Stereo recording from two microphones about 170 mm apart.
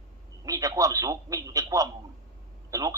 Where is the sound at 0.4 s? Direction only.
20° right (ahead or behind).